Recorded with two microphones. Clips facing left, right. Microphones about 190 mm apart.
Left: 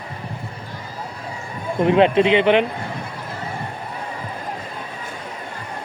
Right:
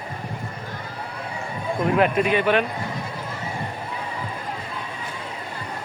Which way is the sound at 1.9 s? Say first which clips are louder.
Left 5 dB; 25° left (ahead or behind).